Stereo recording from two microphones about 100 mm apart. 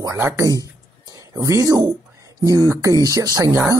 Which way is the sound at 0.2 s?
30° right (ahead or behind).